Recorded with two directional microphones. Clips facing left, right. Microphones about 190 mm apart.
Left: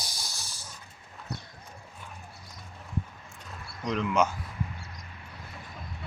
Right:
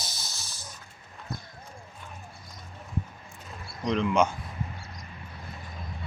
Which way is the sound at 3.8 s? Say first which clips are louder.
Right 2 dB; 5° left (ahead or behind).